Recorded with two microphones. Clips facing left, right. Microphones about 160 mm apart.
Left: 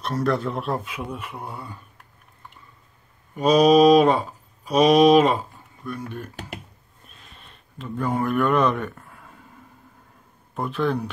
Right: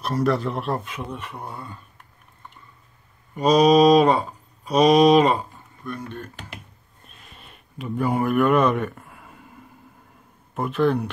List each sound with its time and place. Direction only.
0.0 s speech: 5° right (ahead or behind)
3.3 s speech: 5° left (ahead or behind)
7.3 s speech: 10° right (ahead or behind)
10.5 s speech: 5° right (ahead or behind)